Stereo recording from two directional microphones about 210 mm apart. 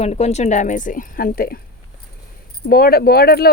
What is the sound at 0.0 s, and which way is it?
A woman's voice, 30° left (ahead or behind).